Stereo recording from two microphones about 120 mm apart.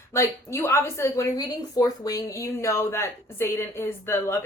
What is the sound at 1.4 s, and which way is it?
Speech, 35° left (ahead or behind).